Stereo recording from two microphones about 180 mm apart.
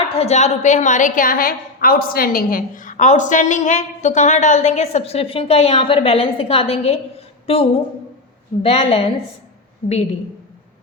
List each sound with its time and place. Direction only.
0.1 s a woman's voice: 35° left (ahead or behind)